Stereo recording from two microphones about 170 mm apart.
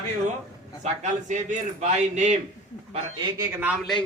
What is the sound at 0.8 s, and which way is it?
Speech, 45° right (ahead or behind).